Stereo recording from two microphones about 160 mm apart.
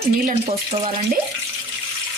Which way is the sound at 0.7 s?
35° right (ahead or behind).